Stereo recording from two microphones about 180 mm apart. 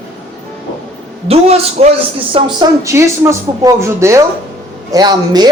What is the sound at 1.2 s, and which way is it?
Speech, 35° right (ahead or behind).